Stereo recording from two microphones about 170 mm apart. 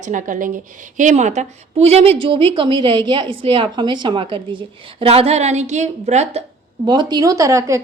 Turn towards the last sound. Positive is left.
turn(degrees=-20)  # may be behind; listen again after turning